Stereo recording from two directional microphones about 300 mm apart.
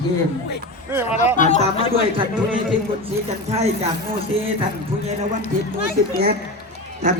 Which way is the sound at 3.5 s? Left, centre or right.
Right.